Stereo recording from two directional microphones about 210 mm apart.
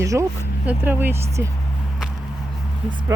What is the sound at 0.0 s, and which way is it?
Speech, 15° right (ahead or behind).